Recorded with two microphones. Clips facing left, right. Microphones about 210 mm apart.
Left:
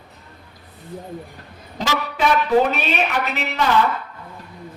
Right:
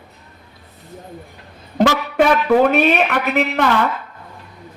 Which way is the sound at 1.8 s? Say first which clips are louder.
Right 7 dB; 55° right (ahead or behind).